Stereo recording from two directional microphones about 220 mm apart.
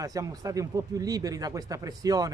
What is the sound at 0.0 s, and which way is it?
Speech, 15° right (ahead or behind).